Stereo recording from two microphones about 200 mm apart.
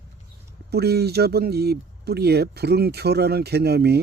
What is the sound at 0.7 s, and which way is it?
Speech, 55° right (ahead or behind).